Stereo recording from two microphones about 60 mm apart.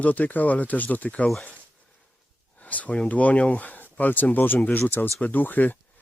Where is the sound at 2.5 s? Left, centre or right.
Left.